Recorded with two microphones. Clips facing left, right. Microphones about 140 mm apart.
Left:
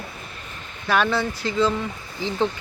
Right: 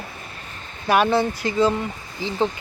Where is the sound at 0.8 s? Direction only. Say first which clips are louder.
Right 3 dB; 15° right (ahead or behind).